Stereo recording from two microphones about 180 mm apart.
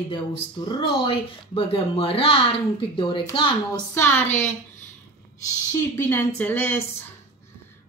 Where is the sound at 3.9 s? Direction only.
10° left (ahead or behind).